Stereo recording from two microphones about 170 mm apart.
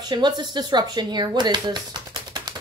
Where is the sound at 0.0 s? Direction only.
25° right (ahead or behind).